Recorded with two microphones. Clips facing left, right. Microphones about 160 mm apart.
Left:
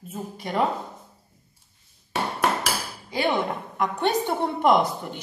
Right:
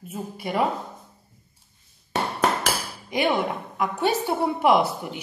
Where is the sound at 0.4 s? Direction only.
5° right (ahead or behind).